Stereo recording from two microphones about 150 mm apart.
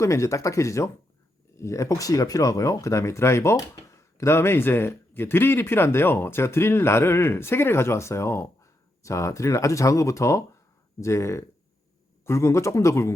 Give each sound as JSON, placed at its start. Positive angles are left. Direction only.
{"t": 0.0, "sound": "a man's voice", "side_deg": 20}